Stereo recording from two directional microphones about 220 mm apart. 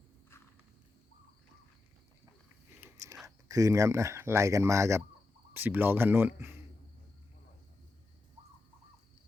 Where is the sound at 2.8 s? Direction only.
10° right (ahead or behind).